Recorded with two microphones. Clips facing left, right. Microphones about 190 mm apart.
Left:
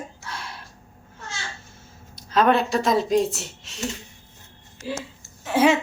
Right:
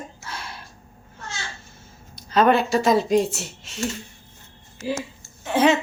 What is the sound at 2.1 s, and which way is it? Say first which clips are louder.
Speech: right 1 dB; centre (ahead or behind).